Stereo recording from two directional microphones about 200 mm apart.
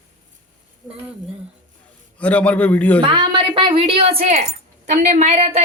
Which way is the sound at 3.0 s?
25° right (ahead or behind).